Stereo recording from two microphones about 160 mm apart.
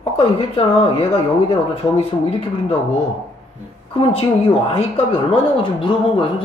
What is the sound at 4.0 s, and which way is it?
Speech, 35° left (ahead or behind).